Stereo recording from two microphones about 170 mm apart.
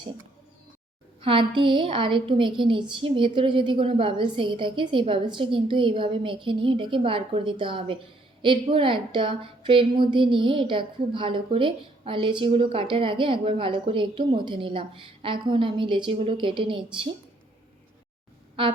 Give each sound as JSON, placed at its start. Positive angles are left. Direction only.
{"t": 1.2, "sound": "a woman's voice", "side_deg": -30}
{"t": 18.6, "sound": "a woman's voice", "side_deg": -30}